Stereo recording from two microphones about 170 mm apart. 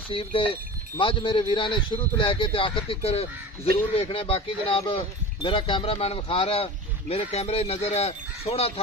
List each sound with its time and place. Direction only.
0.1 s speech: 30° left (ahead or behind)